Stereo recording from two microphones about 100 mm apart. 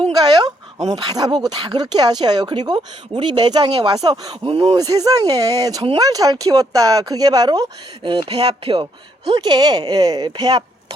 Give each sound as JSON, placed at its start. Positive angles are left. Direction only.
{"t": 0.2, "sound": "speech", "side_deg": -45}
{"t": 4.5, "sound": "speech", "side_deg": -65}
{"t": 4.8, "sound": "speech", "side_deg": -40}
{"t": 8.3, "sound": "speech", "side_deg": -85}